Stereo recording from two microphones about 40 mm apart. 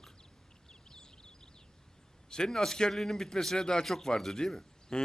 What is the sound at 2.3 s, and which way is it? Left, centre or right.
A man's voice, centre.